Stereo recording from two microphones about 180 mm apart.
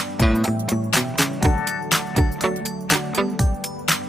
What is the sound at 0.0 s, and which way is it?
Music, centre (ahead or behind).